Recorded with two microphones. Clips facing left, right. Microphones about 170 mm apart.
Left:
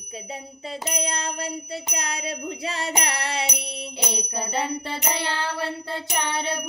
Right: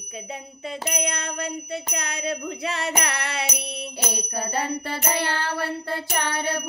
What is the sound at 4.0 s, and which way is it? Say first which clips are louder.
Music: even; 20° left (ahead or behind).